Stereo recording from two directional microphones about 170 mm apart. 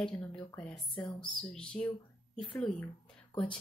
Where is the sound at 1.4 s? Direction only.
5° left (ahead or behind).